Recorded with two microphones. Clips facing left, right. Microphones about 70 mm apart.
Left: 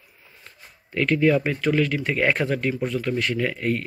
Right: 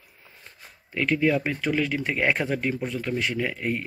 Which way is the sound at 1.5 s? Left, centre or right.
Centre.